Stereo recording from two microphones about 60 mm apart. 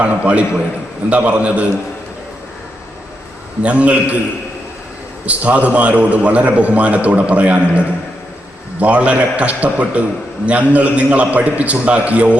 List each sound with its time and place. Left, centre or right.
0.0 s a man's voice: right
3.6 s a man's voice: right
5.2 s a man's voice: right